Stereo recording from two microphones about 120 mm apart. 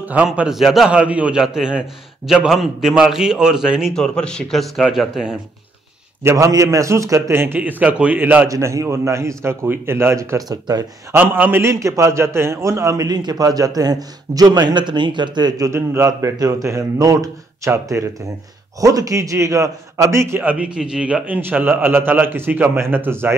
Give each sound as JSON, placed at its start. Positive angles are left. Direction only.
{"t": 0.0, "sound": "a man's voice", "side_deg": -10}
{"t": 3.9, "sound": "a man's voice", "side_deg": 5}
{"t": 6.2, "sound": "a man's voice", "side_deg": -25}
{"t": 8.5, "sound": "a man's voice", "side_deg": -25}
{"t": 11.1, "sound": "a man's voice", "side_deg": -15}